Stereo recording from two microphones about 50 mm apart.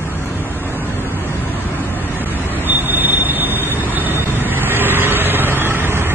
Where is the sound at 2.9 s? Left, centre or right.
Right.